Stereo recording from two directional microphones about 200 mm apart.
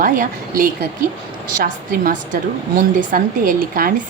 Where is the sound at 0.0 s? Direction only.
45° right (ahead or behind).